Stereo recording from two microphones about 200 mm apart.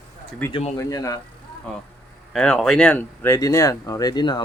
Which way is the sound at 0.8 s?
15° left (ahead or behind).